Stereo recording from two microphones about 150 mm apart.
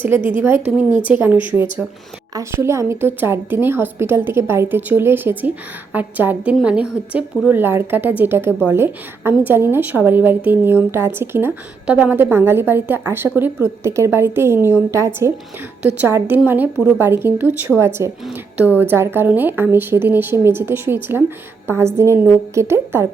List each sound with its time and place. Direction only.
0.3 s a woman's voice: 15° right (ahead or behind)